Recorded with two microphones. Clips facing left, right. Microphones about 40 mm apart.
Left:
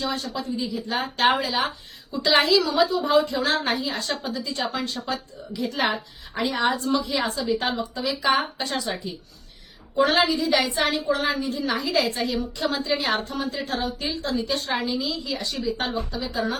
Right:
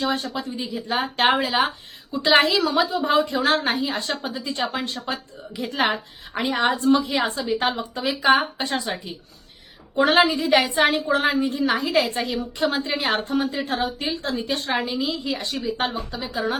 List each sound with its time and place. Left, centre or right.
0.0 s a woman's voice: right